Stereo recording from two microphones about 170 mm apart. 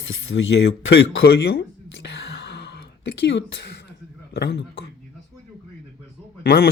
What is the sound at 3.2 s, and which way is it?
Speech, 90° left.